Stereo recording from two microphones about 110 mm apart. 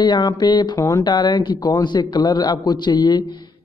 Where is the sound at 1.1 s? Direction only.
45° left (ahead or behind).